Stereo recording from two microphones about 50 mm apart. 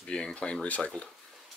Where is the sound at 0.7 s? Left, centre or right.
Left.